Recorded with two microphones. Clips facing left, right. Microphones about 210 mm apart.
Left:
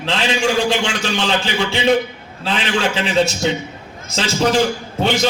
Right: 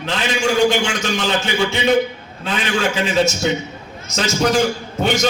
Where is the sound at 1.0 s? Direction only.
30° left (ahead or behind).